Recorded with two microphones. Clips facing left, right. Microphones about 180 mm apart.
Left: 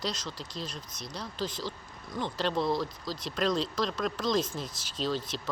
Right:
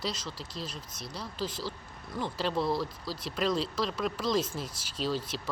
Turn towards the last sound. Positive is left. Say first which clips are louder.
# even
turn(degrees=-5)  # may be behind; listen again after turning